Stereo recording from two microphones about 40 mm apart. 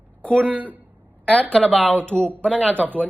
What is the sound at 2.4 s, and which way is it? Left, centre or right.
Speech, left.